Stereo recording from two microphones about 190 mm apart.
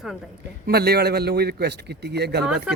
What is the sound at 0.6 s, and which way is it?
A man's voice, 55° right (ahead or behind).